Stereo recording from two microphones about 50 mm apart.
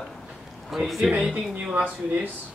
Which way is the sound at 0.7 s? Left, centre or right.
Centre.